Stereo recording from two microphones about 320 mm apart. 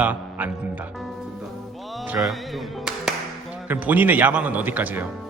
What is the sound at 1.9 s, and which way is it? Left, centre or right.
Music, centre.